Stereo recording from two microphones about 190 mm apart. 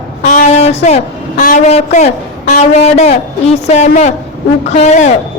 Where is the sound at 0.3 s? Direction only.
40° left (ahead or behind).